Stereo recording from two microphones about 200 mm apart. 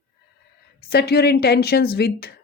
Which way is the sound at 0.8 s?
50° left (ahead or behind).